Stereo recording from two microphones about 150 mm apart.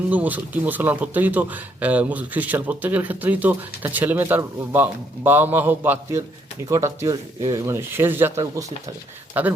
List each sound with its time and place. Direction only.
0.1 s a man's voice: 10° right (ahead or behind)
9.4 s a man's voice: 10° right (ahead or behind)